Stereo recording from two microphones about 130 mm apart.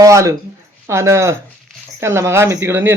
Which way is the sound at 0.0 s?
25° right (ahead or behind).